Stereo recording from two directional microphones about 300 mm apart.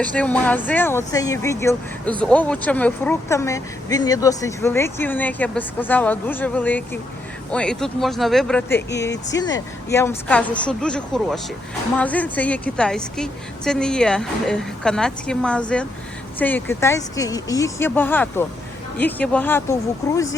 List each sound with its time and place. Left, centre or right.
0.0 s a woman's voice: centre